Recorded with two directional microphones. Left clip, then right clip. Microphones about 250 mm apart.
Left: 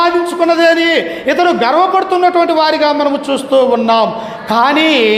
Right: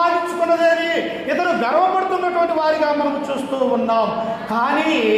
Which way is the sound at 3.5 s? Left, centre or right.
Left.